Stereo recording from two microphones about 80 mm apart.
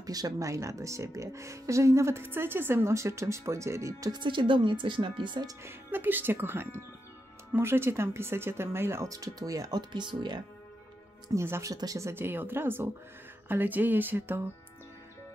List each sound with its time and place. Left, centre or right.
0.0 s speech: right
4.1 s speech: right
5.6 s speech: right
9.8 s speech: right
11.3 s speech: right
11.7 s speech: right
12.1 s speech: right